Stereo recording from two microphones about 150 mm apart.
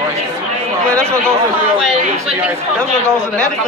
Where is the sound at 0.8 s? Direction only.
5° left (ahead or behind).